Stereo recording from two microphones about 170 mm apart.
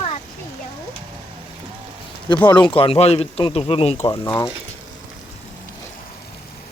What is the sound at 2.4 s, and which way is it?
Speech, 10° left (ahead or behind).